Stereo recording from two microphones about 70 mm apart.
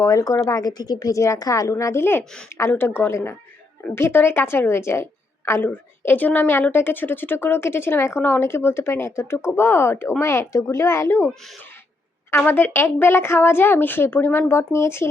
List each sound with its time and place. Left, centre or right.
0.0 s a woman's voice: left
12.4 s a woman's voice: left